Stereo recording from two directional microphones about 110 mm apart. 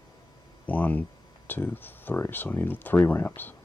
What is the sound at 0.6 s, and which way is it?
Speech, 15° left (ahead or behind).